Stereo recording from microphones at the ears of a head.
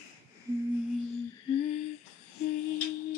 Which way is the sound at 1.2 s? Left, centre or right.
Left.